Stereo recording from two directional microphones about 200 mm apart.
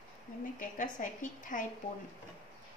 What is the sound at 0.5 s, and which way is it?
A woman's voice, 40° left (ahead or behind).